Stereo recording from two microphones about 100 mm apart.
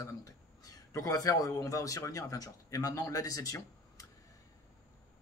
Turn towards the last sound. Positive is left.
turn(degrees=35)  # may be behind; listen again after turning